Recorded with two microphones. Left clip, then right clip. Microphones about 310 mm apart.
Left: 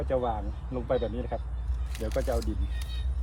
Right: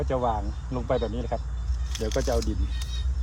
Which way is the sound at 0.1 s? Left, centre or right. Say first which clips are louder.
Right 2 dB; right.